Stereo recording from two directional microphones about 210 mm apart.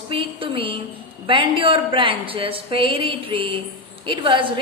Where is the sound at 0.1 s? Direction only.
25° right (ahead or behind).